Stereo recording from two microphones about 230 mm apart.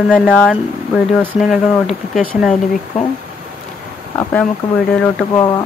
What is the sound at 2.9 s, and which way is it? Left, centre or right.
Speech, left.